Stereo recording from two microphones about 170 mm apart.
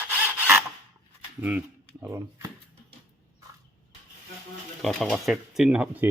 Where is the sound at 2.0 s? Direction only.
20° right (ahead or behind).